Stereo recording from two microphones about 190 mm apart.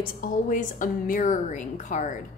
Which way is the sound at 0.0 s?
45° left (ahead or behind).